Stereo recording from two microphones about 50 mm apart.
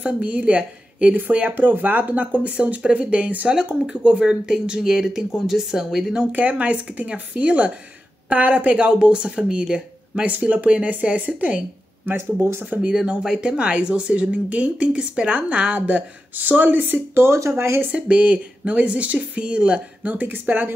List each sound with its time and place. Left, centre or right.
0.0 s a woman's voice: right
3.4 s speech: right
6.3 s speech: right
12.9 s speech: centre; by 17.4 s right
17.5 s speech: right
17.9 s speech: right